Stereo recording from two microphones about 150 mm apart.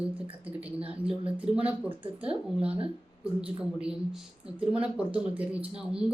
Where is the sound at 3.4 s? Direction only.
5° right (ahead or behind).